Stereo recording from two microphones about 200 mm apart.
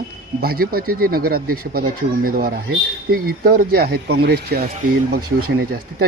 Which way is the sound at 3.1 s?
50° right (ahead or behind).